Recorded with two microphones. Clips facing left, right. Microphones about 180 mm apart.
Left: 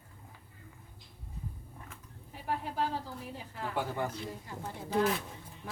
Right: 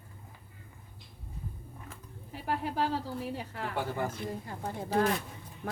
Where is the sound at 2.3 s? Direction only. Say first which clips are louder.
Right 3 dB; 75° right (ahead or behind).